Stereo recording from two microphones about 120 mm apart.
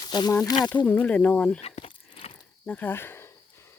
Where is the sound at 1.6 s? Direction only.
55° left (ahead or behind).